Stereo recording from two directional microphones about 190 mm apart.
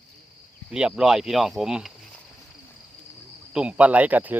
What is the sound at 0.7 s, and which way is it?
Speech, 5° right (ahead or behind).